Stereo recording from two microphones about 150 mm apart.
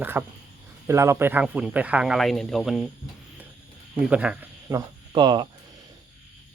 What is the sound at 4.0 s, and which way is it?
Speech, 10° right (ahead or behind).